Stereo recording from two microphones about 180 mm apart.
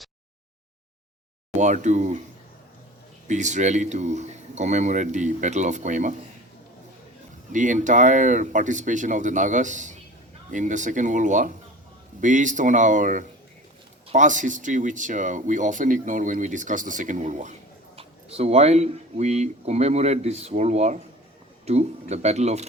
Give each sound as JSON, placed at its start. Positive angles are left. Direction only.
{"t": 1.5, "sound": "speech", "side_deg": -40}
{"t": 3.2, "sound": "speech", "side_deg": -40}
{"t": 7.5, "sound": "speech", "side_deg": -45}